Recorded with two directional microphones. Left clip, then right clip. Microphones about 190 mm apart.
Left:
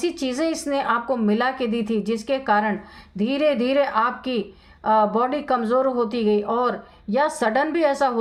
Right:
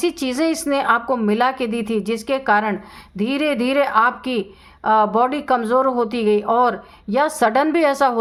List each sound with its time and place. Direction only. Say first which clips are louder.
0.0 s speech: right 4 dB; 35° right (ahead or behind)